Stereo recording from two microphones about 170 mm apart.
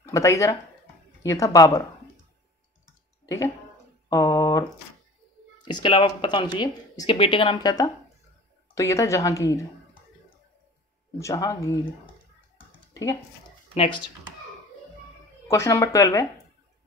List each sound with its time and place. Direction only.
0.0 s speech: 20° left (ahead or behind)
3.3 s speech: 20° left (ahead or behind)
5.7 s speech: 25° left (ahead or behind)
11.1 s speech: 20° left (ahead or behind)
13.7 s speech: 25° left (ahead or behind)
15.4 s speech: 15° left (ahead or behind)